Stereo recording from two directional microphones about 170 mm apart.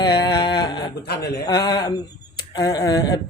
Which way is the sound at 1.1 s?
75° left (ahead or behind).